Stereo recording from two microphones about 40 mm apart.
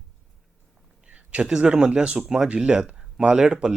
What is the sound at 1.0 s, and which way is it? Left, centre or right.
Speech, right.